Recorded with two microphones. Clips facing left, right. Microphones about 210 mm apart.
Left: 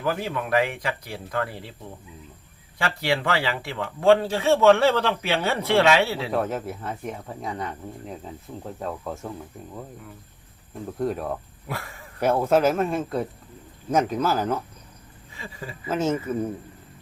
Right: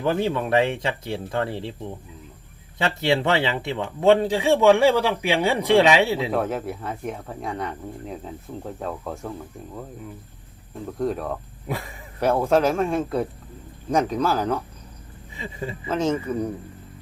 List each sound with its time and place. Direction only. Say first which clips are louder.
0.0 s speech: right 4 dB; 25° right (ahead or behind)
2.7 s speech: right 3 dB; 20° right (ahead or behind)
6.3 s speech: right 1 dB; centre (ahead or behind)
11.0 s speech: right 1 dB; 5° left (ahead or behind)
11.7 s speech: right 4 dB; 15° right (ahead or behind)
12.2 s speech: even; 5° left (ahead or behind)
15.4 s speech: right 6 dB; 20° right (ahead or behind)
15.9 s speech: right 1 dB; 5° left (ahead or behind)